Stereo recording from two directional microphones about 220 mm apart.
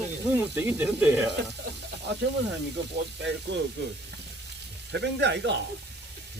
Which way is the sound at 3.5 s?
50° right (ahead or behind).